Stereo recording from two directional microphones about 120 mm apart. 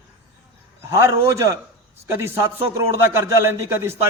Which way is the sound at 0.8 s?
20° right (ahead or behind).